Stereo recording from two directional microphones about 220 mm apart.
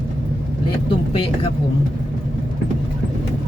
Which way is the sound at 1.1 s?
25° left (ahead or behind).